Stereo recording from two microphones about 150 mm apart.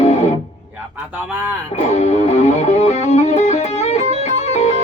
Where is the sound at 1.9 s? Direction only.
50° left (ahead or behind).